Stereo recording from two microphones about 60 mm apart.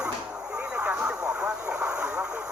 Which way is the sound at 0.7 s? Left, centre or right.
Right.